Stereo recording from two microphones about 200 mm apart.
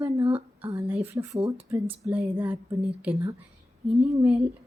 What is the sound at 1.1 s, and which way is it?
A woman's voice, 15° right (ahead or behind).